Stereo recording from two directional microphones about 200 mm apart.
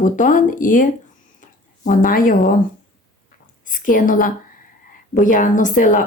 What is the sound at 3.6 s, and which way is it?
A woman's voice, 40° left (ahead or behind).